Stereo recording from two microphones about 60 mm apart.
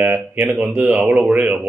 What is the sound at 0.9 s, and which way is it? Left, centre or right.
Mantra, right.